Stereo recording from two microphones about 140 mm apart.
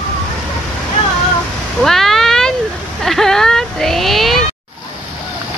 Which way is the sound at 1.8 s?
Centre (ahead or behind).